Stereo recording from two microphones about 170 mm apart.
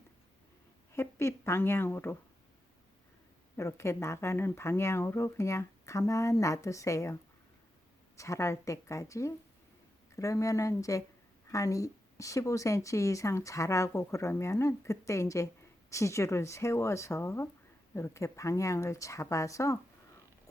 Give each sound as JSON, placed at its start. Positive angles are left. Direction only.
{"t": 0.9, "sound": "a woman's voice", "side_deg": 15}
{"t": 3.6, "sound": "a woman's voice", "side_deg": 15}